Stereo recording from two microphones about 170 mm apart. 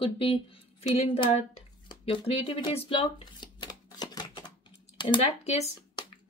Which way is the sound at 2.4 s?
35° left (ahead or behind).